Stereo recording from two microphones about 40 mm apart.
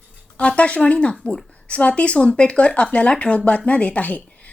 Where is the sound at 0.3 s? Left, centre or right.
Left.